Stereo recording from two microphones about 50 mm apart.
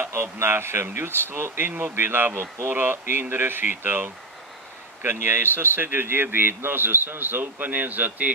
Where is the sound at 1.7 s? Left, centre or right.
Right.